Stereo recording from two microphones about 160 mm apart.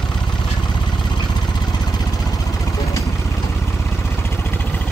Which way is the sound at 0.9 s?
25° left (ahead or behind).